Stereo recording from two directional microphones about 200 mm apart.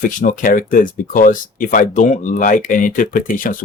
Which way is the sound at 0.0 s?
40° left (ahead or behind).